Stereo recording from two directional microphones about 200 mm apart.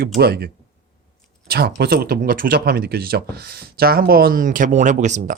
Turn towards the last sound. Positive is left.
turn(degrees=-35)  # may be behind; listen again after turning